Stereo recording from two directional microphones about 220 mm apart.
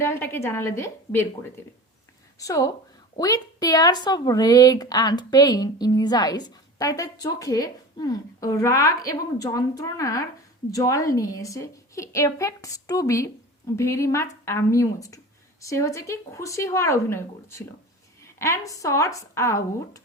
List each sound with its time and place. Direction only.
0.0 s a woman's voice: 10° left (ahead or behind)